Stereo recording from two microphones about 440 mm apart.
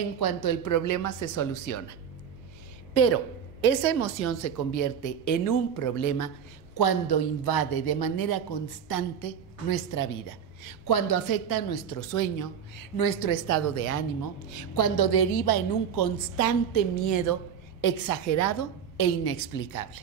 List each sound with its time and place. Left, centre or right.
0.2 s a woman's voice: left
2.9 s a woman's voice: left
13.5 s a woman's voice: left
15.0 s a woman's voice: left
16.3 s a woman's voice: left
18.9 s a woman's voice: left